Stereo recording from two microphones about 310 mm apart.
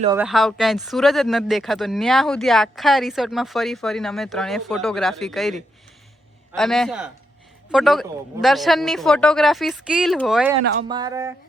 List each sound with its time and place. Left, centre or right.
0.2 s speech: centre
6.6 s speech: centre
10.8 s speech: centre